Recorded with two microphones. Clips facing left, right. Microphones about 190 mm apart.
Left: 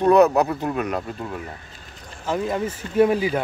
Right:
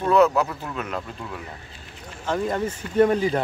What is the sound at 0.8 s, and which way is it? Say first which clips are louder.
Speech: left 5 dB; 40° left (ahead or behind).